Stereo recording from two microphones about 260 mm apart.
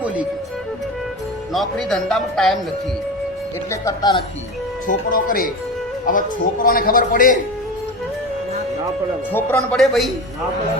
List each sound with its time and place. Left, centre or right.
1.5 s a man's voice: centre
3.7 s speech: centre
4.9 s a man's voice: left
9.3 s a man's voice: centre